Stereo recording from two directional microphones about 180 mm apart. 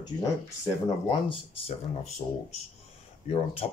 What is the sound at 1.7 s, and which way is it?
Speech, 35° left (ahead or behind).